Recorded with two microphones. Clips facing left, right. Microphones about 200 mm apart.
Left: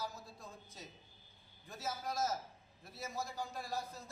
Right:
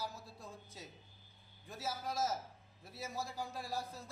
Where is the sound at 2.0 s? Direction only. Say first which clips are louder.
Even; 5° right (ahead or behind).